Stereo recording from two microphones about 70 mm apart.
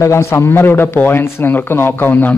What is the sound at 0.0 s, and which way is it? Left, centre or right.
A man's voice, left.